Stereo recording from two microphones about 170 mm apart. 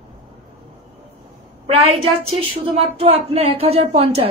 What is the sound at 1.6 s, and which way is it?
A woman's voice, 35° right (ahead or behind).